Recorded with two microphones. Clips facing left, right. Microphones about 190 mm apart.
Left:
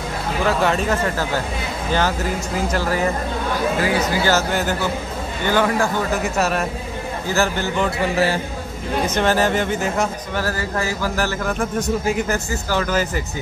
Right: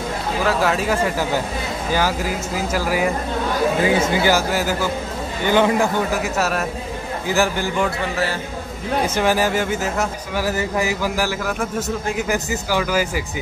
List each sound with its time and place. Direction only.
0.5 s speech: 5° right (ahead or behind)
3.8 s speech: 25° right (ahead or behind); by 4.7 s 5° right (ahead or behind)
5.5 s speech: 20° right (ahead or behind)
6.2 s speech: centre (ahead or behind)
7.2 s speech: 15° right (ahead or behind)
9.0 s speech: 10° right (ahead or behind)